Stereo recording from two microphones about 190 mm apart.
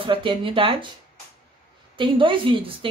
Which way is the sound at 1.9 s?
25° right (ahead or behind).